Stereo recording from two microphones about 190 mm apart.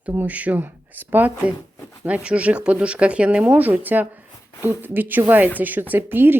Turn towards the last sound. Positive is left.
turn(degrees=-10)  # may be behind; listen again after turning